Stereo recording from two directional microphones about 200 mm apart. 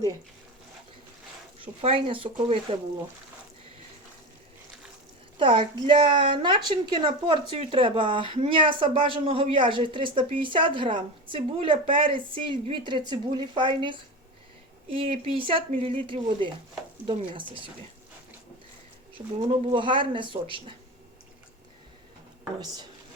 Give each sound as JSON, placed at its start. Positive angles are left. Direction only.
{"t": 1.5, "sound": "a woman's voice", "side_deg": -25}
{"t": 5.4, "sound": "a woman's voice", "side_deg": -25}
{"t": 19.1, "sound": "a woman's voice", "side_deg": -30}
{"t": 22.6, "sound": "a woman's voice", "side_deg": -20}